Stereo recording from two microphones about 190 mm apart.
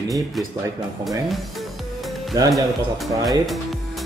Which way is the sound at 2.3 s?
15° right (ahead or behind).